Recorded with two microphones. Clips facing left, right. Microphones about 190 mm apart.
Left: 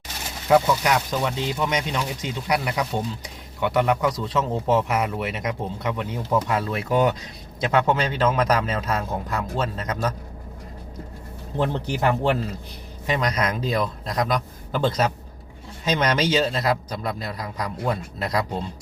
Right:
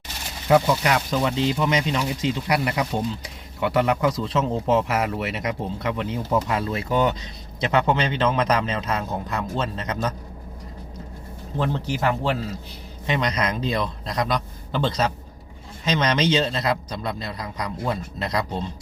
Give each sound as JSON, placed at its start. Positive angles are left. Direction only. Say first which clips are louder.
{"t": 0.5, "sound": "speech", "louder": "even", "side_deg": 0}
{"t": 11.6, "sound": "a man's voice", "louder": "left 1 dB", "side_deg": 15}
{"t": 13.1, "sound": "speech", "louder": "even", "side_deg": 5}